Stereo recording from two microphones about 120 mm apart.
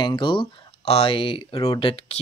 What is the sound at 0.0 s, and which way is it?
Speech, 40° left (ahead or behind).